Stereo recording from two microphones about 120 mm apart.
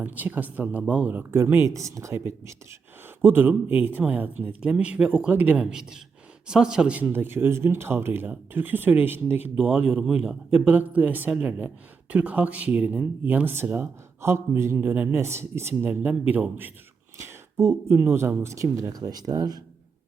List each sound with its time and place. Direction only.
0.0 s a man's voice: 15° right (ahead or behind); by 19.6 s 35° right (ahead or behind)